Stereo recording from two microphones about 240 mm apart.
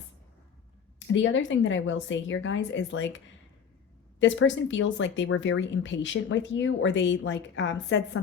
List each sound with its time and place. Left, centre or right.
0.9 s speech: left
4.2 s speech: left